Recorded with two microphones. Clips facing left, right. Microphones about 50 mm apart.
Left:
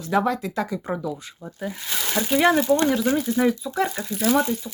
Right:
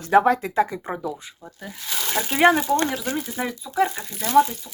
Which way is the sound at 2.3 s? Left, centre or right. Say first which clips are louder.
Right 2 dB; right.